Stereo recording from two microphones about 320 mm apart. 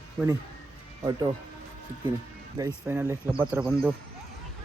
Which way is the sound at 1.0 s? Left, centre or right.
Centre.